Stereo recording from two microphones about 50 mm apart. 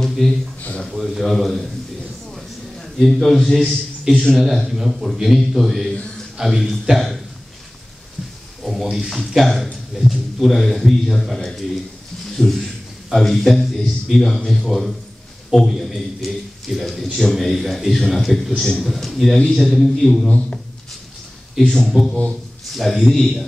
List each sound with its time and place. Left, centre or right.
0.0 s a sound: centre
0.8 s a man's voice: centre
2.3 s a sound: centre
4.1 s speech: centre
4.4 s a man's voice: centre
8.9 s a man's voice: centre
20.2 s speech: left
21.5 s a man's voice: centre